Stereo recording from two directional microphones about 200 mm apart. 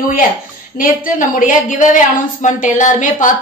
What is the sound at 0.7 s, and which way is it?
A woman's voice, 45° left (ahead or behind).